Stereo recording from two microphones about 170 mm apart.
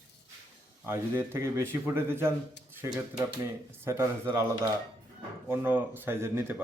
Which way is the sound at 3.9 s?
15° right (ahead or behind).